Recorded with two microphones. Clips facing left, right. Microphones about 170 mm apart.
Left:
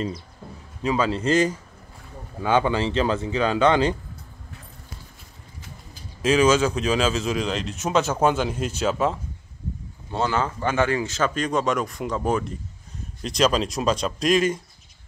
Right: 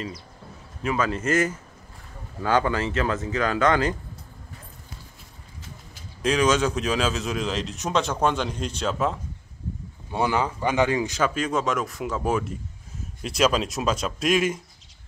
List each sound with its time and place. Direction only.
0.8 s speech: 30° left (ahead or behind)
6.2 s a man's voice: centre (ahead or behind)
10.1 s a man's voice: 15° right (ahead or behind)